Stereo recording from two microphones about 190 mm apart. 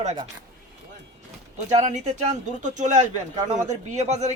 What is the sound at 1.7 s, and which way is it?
A man's voice, 40° right (ahead or behind).